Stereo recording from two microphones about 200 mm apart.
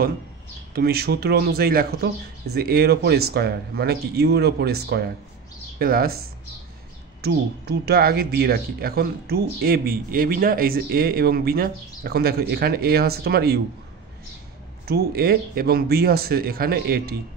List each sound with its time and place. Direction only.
0.7 s speech: 50° right (ahead or behind)
7.2 s speech: 55° right (ahead or behind)
14.9 s speech: 50° right (ahead or behind)